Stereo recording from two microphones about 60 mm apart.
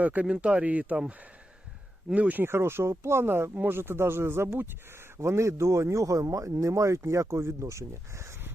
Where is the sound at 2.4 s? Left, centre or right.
Right.